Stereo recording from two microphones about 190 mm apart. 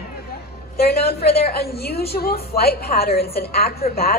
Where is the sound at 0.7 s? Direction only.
55° left (ahead or behind).